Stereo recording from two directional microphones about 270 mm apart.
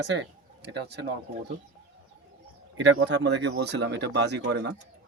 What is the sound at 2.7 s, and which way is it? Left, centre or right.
Speech, right.